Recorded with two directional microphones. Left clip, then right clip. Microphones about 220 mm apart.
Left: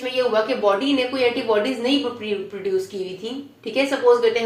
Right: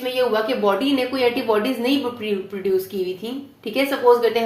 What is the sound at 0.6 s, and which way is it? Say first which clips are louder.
Speech: even; 35° right (ahead or behind).